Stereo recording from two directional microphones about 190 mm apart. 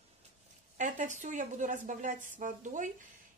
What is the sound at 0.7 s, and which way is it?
A woman's voice, 40° right (ahead or behind).